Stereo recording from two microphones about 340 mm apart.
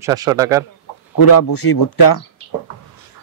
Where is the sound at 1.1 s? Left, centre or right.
Left.